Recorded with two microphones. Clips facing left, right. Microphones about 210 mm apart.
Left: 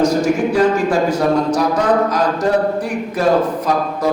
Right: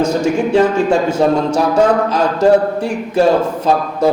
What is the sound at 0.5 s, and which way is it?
Speech, 25° right (ahead or behind).